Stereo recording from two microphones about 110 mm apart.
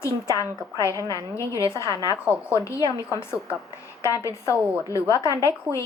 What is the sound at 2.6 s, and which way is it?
Speech, 30° left (ahead or behind).